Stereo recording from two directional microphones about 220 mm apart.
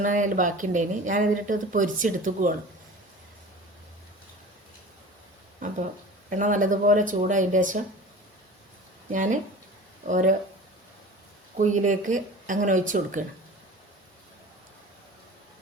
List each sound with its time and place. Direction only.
0.0 s speech: 35° right (ahead or behind)
6.3 s speech: 35° right (ahead or behind)
9.1 s speech: 35° right (ahead or behind)
11.5 s speech: 35° right (ahead or behind)